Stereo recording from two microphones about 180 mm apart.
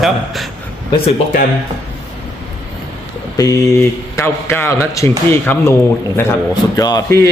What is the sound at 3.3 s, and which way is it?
A man's voice, 20° left (ahead or behind).